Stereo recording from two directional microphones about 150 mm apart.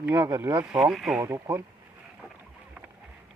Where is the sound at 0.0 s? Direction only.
10° right (ahead or behind).